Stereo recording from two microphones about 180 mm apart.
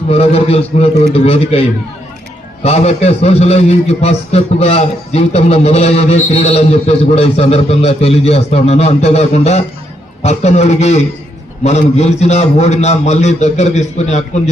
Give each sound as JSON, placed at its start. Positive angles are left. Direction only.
{"t": 0.1, "sound": "a man's voice", "side_deg": 35}
{"t": 2.6, "sound": "a man's voice", "side_deg": 35}